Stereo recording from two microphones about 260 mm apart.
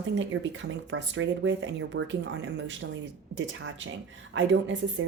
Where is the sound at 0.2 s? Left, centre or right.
Right.